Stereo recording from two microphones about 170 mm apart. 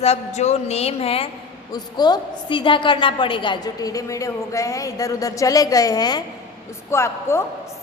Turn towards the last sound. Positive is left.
turn(degrees=15)  # may be behind; listen again after turning